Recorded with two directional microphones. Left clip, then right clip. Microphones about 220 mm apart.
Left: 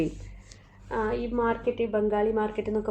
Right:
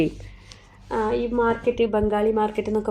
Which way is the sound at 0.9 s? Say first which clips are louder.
Right 5 dB; 50° right (ahead or behind).